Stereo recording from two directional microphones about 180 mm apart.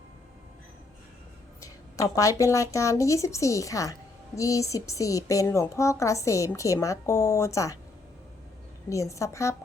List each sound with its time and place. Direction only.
1.6 s speech: 20° left (ahead or behind)
8.9 s speech: 15° left (ahead or behind)